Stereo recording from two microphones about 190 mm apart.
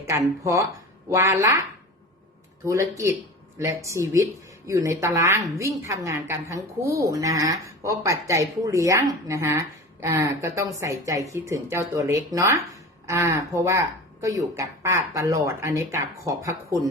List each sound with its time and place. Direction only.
0.1 s speech: 15° right (ahead or behind)
3.6 s speech: 15° right (ahead or behind)